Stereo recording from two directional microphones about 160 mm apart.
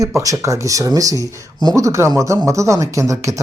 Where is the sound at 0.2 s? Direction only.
20° right (ahead or behind).